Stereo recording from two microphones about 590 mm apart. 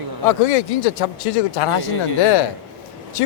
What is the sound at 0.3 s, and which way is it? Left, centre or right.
Speech, left.